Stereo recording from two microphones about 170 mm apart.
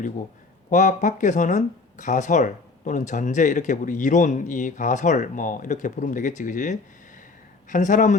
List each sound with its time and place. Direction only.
0.7 s speech: 45° left (ahead or behind)